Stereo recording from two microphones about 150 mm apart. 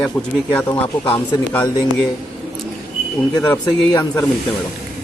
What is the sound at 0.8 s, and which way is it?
Speech, 15° left (ahead or behind).